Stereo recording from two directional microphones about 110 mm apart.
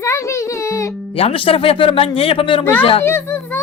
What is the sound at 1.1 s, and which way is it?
Speech, 55° left (ahead or behind).